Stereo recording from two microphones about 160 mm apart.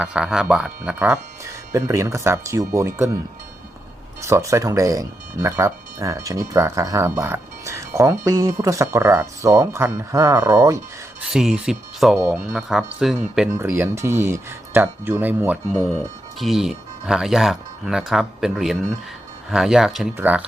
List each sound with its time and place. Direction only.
0.0 s speech: 5° right (ahead or behind)
4.2 s speech: 15° right (ahead or behind)
11.3 s speech: 5° right (ahead or behind)
13.6 s speech: 15° right (ahead or behind)